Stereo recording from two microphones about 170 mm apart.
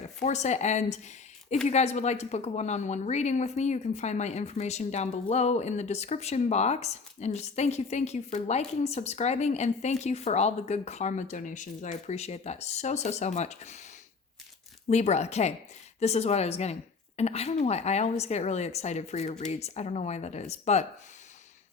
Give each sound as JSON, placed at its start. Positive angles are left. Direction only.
{"t": 0.2, "sound": "speech", "side_deg": 45}
{"t": 14.8, "sound": "speech", "side_deg": 40}